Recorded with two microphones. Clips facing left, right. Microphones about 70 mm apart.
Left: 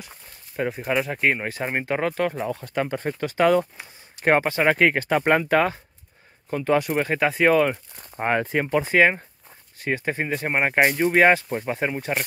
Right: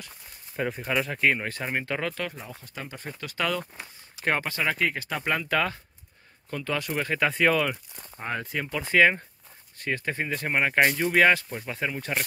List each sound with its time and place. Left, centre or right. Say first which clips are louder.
0.6 s speech: left 4 dB; centre; by 2.2 s left
2.3 s speech: left 14 dB; left
3.3 s speech: left 10 dB; left
4.6 s speech: left 9 dB; left
5.5 s speech: left 6 dB; left
6.9 s speech: left 4 dB; centre
7.5 s speech: left 7 dB; left
8.2 s speech: left 9 dB; left
8.5 s speech: left 9 dB; left
8.8 s speech: right 2 dB; centre
11.2 s speech: left 4 dB; left